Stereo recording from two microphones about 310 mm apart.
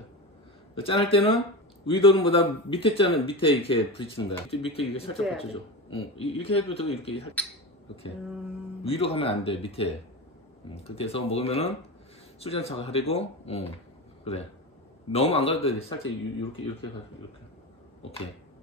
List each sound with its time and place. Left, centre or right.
0.7 s a man's voice: centre
8.8 s speech: centre
15.1 s speech: centre